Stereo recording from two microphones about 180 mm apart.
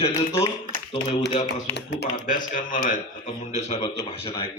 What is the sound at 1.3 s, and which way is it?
Speech, 40° left (ahead or behind).